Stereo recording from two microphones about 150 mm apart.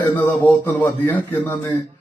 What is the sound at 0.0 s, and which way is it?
Speech, 15° left (ahead or behind).